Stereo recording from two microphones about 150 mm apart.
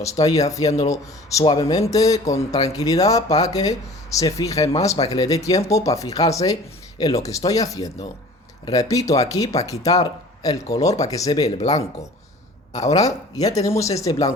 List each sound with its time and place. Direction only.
0.0 s speech: 20° left (ahead or behind)
11.4 s speech: 50° left (ahead or behind)
13.1 s speech: 25° left (ahead or behind)